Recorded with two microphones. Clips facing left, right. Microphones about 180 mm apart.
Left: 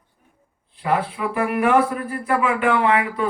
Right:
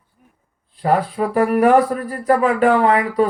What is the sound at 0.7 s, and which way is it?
Speech, 40° right (ahead or behind).